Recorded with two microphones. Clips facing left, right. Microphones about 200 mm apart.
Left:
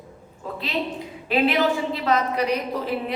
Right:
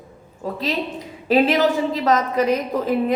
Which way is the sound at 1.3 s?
40° right (ahead or behind).